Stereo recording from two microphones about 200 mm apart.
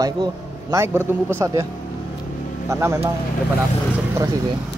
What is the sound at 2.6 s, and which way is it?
Speech, 15° right (ahead or behind).